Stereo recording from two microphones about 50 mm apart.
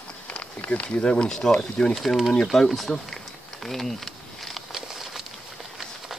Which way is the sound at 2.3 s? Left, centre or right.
Centre.